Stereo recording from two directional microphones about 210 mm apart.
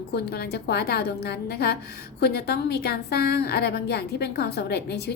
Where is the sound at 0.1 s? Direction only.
50° left (ahead or behind).